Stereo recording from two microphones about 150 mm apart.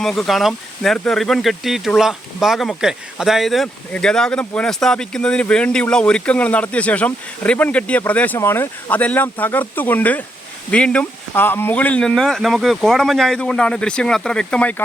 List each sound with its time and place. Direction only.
0.0 s speech: 5° left (ahead or behind)